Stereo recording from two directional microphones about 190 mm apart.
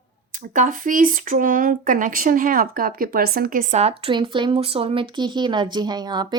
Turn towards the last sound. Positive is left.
turn(degrees=-25)  # may be behind; listen again after turning